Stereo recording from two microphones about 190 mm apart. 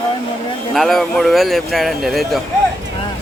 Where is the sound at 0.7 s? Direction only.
Centre (ahead or behind).